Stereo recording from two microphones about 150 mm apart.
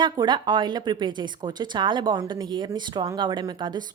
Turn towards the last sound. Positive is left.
turn(degrees=-30)  # may be behind; listen again after turning